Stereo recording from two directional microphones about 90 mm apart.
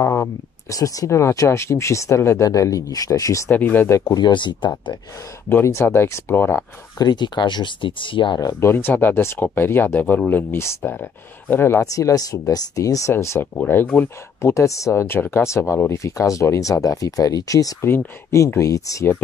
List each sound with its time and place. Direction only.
0.0 s speech: 35° left (ahead or behind)
3.4 s speech: 20° left (ahead or behind)
3.9 s speech: 45° left (ahead or behind); by 4.9 s 60° left (ahead or behind)
5.5 s speech: 30° left (ahead or behind)
7.0 s speech: 50° left (ahead or behind)
8.4 s speech: 35° left (ahead or behind)
11.8 s speech: 40° left (ahead or behind)
13.1 s speech: 30° left (ahead or behind)
14.4 s speech: 35° left (ahead or behind)
17.8 s speech: 30° left (ahead or behind)